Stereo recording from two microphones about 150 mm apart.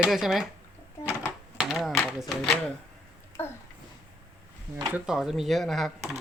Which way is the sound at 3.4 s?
15° left (ahead or behind).